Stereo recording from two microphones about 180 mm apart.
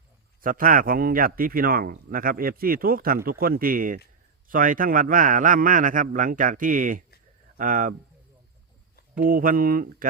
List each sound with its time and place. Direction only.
0.4 s speech: 50° right (ahead or behind)
9.3 s speech: 50° right (ahead or behind)